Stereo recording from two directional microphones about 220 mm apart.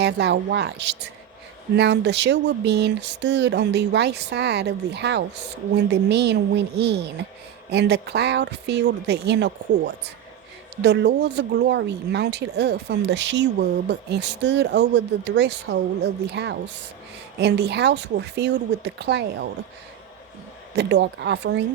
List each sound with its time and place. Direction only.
0.0 s speech: 50° right (ahead or behind)
20.7 s speech: 50° right (ahead or behind)